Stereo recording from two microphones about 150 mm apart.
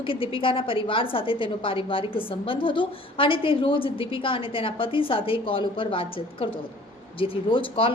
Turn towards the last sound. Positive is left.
turn(degrees=35)  # may be behind; listen again after turning